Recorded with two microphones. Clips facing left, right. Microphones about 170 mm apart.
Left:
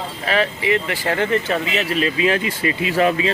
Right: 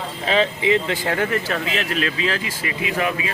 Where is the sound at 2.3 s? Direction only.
25° left (ahead or behind).